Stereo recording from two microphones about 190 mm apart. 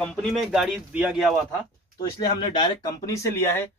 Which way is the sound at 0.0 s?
5° left (ahead or behind).